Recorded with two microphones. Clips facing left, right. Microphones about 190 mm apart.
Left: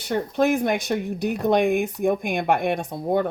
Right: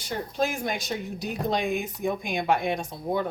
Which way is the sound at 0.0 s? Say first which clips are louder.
Left 7 dB; 60° left (ahead or behind).